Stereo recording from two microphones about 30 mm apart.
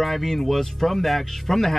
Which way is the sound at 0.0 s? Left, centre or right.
Centre.